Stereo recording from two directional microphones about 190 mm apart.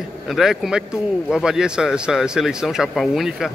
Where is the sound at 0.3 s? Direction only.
Centre (ahead or behind).